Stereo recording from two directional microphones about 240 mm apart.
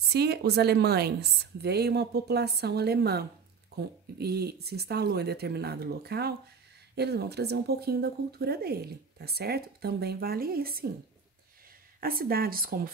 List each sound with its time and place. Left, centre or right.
0.1 s a woman's voice: right
12.0 s speech: right